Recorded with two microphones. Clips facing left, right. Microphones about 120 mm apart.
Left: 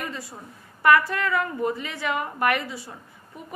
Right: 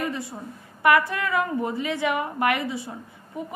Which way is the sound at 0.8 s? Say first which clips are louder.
Left 1 dB; 20° right (ahead or behind).